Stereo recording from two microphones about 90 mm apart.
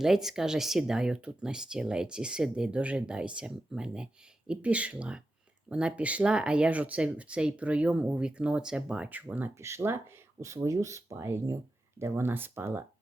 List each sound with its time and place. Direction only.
0.0 s speech: 5° right (ahead or behind)
9.6 s speech: 30° right (ahead or behind)